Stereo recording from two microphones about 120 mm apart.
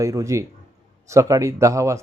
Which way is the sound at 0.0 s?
25° right (ahead or behind).